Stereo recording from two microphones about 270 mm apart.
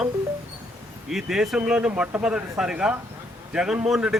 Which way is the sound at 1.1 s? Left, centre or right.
Centre.